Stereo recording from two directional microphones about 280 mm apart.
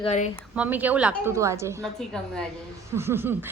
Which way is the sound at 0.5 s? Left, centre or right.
Centre.